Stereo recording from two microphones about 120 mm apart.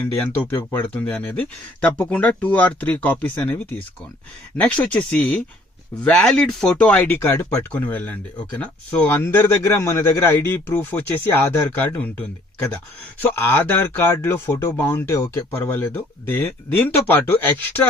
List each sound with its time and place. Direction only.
0.1 s speech: 15° left (ahead or behind)